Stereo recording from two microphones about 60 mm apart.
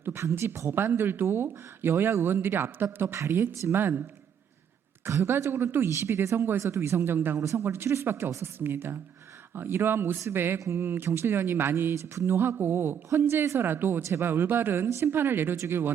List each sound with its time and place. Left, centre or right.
0.0 s speech: right
5.0 s speech: right
7.3 s speech: right
10.6 s speech: right
10.8 s speech: right
12.1 s speech: right
12.4 s speech: right
13.7 s speech: right
14.0 s speech: right
14.3 s speech: right